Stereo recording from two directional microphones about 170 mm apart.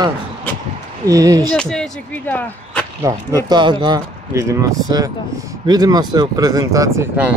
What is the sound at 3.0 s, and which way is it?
Speech, 20° right (ahead or behind).